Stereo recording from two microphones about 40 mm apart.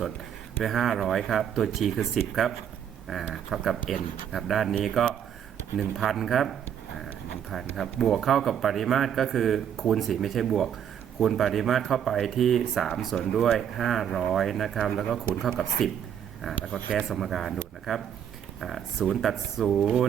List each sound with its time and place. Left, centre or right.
0.6 s speech: centre
7.5 s speech: centre
14.1 s speech: centre
14.3 s speech: centre
14.8 s speech: centre
16.7 s speech: left
17.1 s speech: centre